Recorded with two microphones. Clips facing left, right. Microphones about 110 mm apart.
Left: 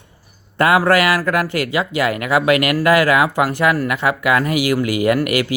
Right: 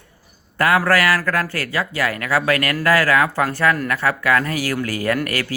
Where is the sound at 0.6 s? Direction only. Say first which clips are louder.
Left 3 dB; 20° left (ahead or behind).